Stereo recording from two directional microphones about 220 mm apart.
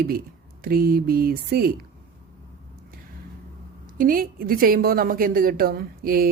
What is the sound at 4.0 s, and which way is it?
A woman's voice, 40° right (ahead or behind).